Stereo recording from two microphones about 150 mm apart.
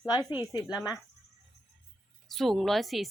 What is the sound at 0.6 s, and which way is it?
Speech, 5° right (ahead or behind).